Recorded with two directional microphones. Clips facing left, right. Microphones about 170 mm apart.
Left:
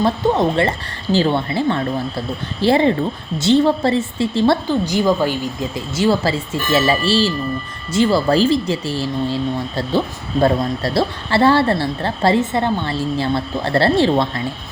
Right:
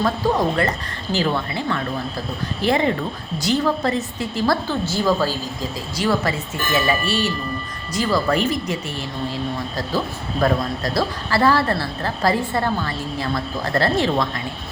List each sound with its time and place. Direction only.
0.0 s a woman's voice: 25° left (ahead or behind)
4.7 s a woman's voice: 15° left (ahead or behind)
6.0 s a woman's voice: 30° left (ahead or behind)